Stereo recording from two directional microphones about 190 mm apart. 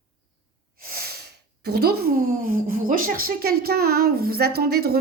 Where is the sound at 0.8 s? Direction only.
50° right (ahead or behind).